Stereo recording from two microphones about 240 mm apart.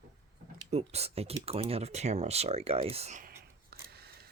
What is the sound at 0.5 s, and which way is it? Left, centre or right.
Speech, right.